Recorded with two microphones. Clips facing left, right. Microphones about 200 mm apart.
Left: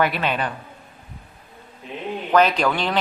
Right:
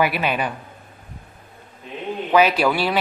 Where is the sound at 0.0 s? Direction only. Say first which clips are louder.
Right 1 dB; 10° right (ahead or behind).